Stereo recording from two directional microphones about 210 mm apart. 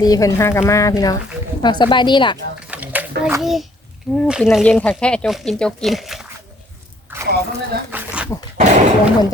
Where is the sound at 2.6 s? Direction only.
5° right (ahead or behind).